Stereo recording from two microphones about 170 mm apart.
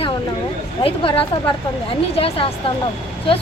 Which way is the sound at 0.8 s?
30° left (ahead or behind).